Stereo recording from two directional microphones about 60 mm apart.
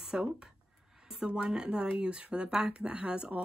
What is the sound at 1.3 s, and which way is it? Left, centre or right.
Speech, centre.